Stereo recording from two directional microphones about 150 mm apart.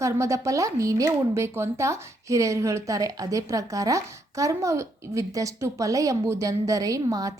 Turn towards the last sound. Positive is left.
turn(degrees=-25)  # may be behind; listen again after turning